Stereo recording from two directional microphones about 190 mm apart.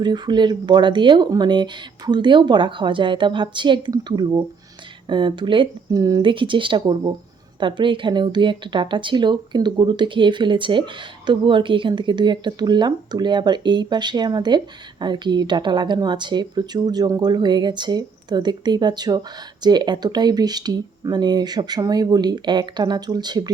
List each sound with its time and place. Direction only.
0.0 s speech: 25° right (ahead or behind)